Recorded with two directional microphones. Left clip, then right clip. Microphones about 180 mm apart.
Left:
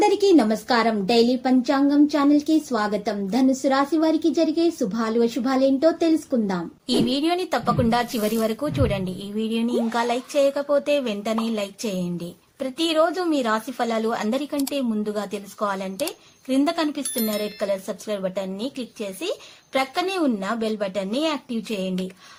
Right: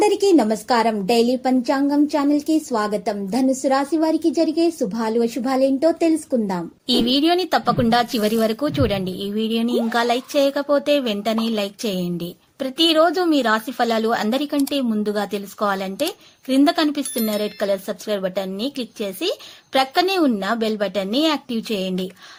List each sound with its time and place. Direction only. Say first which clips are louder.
0.0 s a woman's voice: right 1 dB; 35° right (ahead or behind)